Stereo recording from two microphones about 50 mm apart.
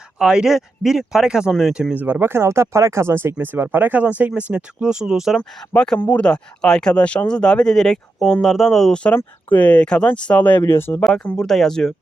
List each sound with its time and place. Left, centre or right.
0.2 s speech: centre
1.9 s speech: right
3.4 s speech: right
4.8 s speech: centre
5.7 s speech: centre
8.4 s speech: centre
9.1 s speech: left
9.6 s speech: left
10.6 s speech: left
11.3 s speech: centre